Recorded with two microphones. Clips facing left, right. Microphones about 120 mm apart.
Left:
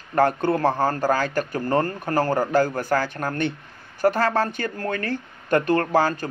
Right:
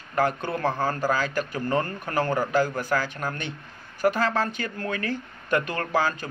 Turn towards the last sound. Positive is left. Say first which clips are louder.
# left 4 dB
turn(degrees=45)  # may be behind; listen again after turning